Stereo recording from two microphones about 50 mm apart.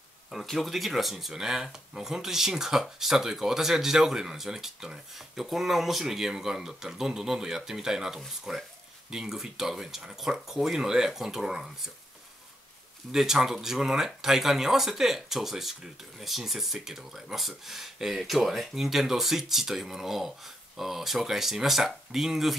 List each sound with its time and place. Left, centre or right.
0.3 s speech: centre
13.1 s speech: centre